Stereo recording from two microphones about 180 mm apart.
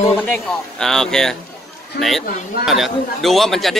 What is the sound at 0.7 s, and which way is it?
A man's voice, 5° left (ahead or behind).